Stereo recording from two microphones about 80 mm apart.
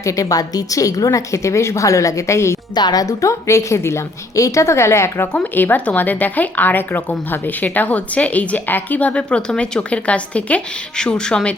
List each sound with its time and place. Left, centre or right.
0.0 s a woman's voice: left
2.7 s a woman's voice: left
5.4 s speech: left